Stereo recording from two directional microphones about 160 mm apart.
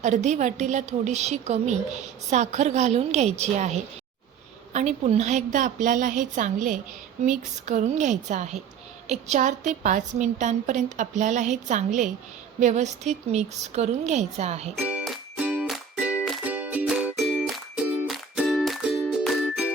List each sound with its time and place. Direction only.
0.0 s a woman's voice: 50° right (ahead or behind)
14.8 s music: 5° right (ahead or behind)